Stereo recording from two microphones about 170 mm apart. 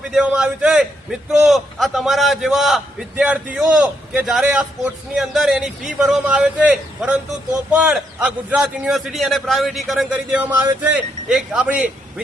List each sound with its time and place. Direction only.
0.0 s a man's voice: 5° right (ahead or behind)